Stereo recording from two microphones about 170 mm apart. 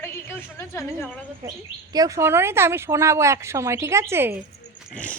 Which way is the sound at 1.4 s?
20° right (ahead or behind).